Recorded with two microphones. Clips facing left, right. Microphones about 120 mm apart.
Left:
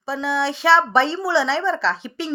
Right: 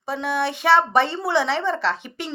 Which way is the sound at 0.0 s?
50° right (ahead or behind).